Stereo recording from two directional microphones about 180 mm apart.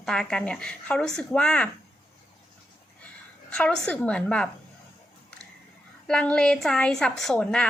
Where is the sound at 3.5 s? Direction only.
5° left (ahead or behind).